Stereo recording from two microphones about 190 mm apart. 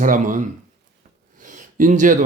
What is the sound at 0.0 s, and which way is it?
Speech, 45° right (ahead or behind).